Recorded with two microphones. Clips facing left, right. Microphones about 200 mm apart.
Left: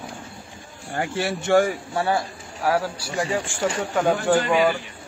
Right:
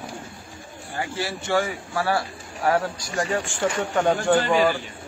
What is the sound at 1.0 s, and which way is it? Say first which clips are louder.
Speech: left 4 dB; 60° left (ahead or behind).